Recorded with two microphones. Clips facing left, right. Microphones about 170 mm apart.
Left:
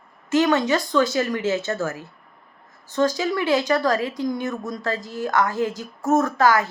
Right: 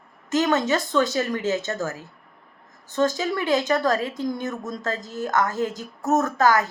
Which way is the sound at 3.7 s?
40° right (ahead or behind).